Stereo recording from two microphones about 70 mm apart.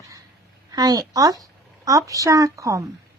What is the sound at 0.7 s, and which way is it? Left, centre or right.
A woman's voice, right.